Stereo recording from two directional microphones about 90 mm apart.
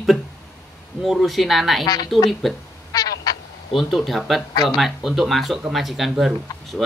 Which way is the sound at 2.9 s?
45° left (ahead or behind).